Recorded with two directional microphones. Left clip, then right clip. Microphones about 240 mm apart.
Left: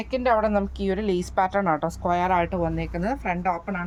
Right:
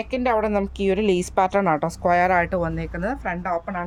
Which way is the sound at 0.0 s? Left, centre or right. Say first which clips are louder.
Even; right.